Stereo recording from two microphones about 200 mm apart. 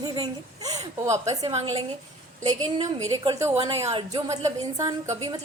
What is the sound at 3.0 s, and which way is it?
A woman's voice, 15° right (ahead or behind).